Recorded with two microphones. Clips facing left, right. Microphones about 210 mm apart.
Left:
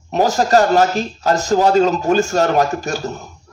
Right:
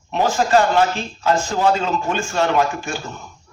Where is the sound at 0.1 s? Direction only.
40° left (ahead or behind).